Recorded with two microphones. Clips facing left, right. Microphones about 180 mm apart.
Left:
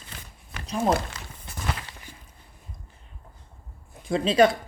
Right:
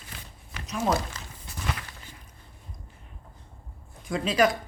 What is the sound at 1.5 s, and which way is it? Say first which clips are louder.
Walk: left 1 dB; 55° left (ahead or behind).